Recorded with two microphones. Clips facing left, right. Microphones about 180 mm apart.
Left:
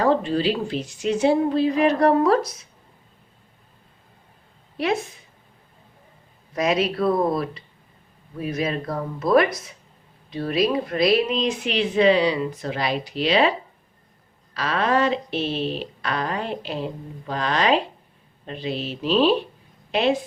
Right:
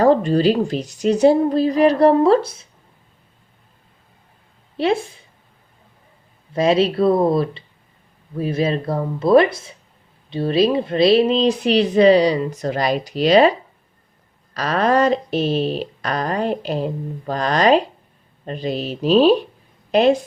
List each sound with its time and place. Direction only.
0.0 s speech: 40° right (ahead or behind)
4.8 s speech: 30° right (ahead or behind)
6.5 s speech: 30° right (ahead or behind)
14.5 s a woman's voice: 40° right (ahead or behind)